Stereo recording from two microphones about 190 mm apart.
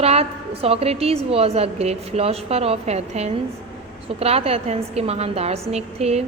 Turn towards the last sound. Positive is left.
turn(degrees=-35)  # may be behind; listen again after turning